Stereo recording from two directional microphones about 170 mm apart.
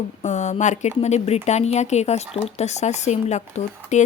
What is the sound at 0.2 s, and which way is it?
Speech, 45° left (ahead or behind).